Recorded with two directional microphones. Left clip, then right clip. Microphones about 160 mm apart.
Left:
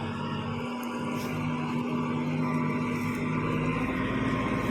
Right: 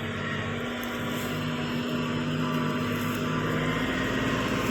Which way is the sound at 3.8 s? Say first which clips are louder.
Right 2 dB; 70° left (ahead or behind).